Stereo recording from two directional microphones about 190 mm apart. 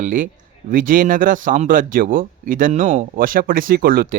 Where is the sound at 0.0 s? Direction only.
45° right (ahead or behind).